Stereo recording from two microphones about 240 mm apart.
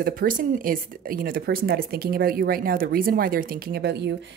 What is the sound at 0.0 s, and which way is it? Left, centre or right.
Speech, right.